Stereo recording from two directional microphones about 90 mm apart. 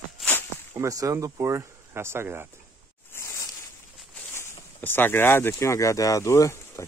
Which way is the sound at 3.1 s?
35° left (ahead or behind).